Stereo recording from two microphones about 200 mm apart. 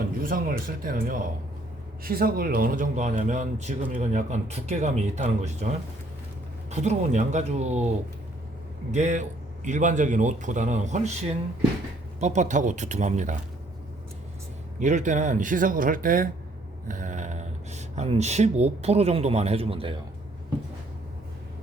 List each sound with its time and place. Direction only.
0.2 s speech: 45° right (ahead or behind)
8.9 s speech: 35° right (ahead or behind)
14.8 s speech: 40° right (ahead or behind)